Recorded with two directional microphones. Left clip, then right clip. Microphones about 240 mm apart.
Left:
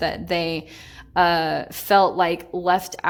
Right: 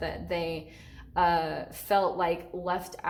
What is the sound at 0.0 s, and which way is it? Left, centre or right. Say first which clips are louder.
Speech: left 9 dB; left.